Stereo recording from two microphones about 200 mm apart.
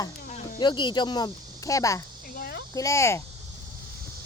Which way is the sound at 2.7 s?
15° left (ahead or behind).